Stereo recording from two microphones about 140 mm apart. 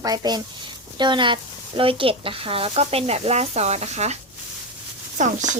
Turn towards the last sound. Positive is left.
turn(degrees=-60)  # may be behind; listen again after turning